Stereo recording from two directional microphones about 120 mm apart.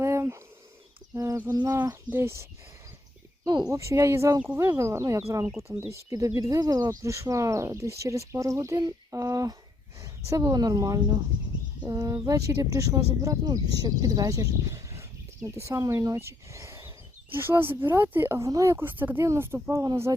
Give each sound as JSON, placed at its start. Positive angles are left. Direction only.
{"t": 0.0, "sound": "a sound", "side_deg": -25}
{"t": 1.1, "sound": "bird", "side_deg": -25}
{"t": 1.5, "sound": "speech", "side_deg": -30}
{"t": 3.4, "sound": "speech", "side_deg": -35}
{"t": 3.8, "sound": "speech", "side_deg": -25}
{"t": 8.8, "sound": "a sound", "side_deg": -30}
{"t": 10.0, "sound": "a woman's voice", "side_deg": -25}